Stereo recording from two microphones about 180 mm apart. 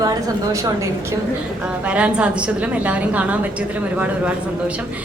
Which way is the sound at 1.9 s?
5° right (ahead or behind).